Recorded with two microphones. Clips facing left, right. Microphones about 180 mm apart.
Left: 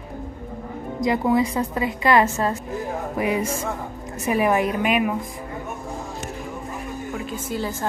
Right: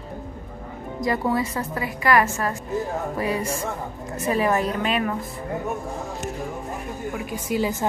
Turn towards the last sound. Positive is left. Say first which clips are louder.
# right 3 dB
turn(degrees=-15)  # may be behind; listen again after turning